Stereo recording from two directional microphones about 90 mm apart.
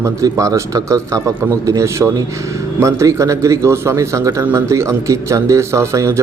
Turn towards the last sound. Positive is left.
turn(degrees=-35)  # may be behind; listen again after turning